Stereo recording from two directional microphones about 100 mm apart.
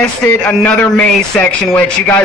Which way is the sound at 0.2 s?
20° left (ahead or behind).